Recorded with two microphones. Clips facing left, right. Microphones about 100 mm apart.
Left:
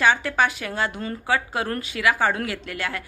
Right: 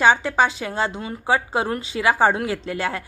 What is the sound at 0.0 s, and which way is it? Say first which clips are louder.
A woman's voice: right 3 dB; 25° right (ahead or behind).